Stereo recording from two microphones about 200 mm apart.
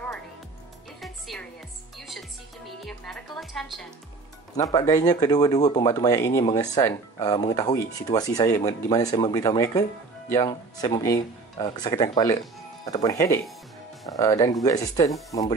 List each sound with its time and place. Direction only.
1.0 s music: centre (ahead or behind)
2.8 s a woman's voice: centre (ahead or behind)
4.8 s speech: 15° left (ahead or behind)